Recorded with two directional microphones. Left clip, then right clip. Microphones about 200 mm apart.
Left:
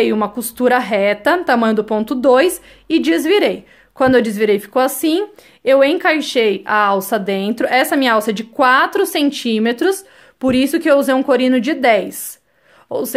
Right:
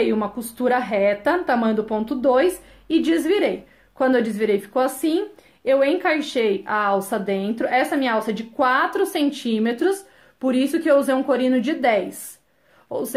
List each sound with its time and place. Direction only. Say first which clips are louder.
0.0 s speech: left 6 dB; 40° left (ahead or behind)